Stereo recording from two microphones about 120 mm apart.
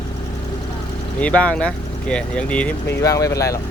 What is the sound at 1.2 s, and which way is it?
Speech, 10° left (ahead or behind).